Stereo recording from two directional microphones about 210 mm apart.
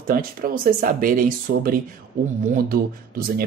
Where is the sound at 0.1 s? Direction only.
40° right (ahead or behind).